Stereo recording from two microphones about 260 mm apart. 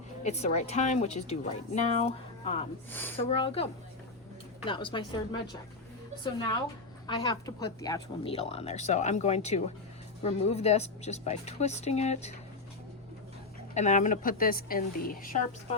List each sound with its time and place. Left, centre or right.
0.2 s a woman's voice: left
2.9 s speech: centre
3.2 s a woman's voice: left
7.1 s a woman's voice: centre
13.7 s a woman's voice: left